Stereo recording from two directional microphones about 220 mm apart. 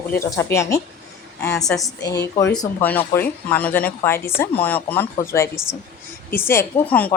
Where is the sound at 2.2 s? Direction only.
15° left (ahead or behind).